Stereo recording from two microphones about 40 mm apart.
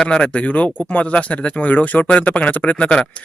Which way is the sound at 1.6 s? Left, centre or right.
Left.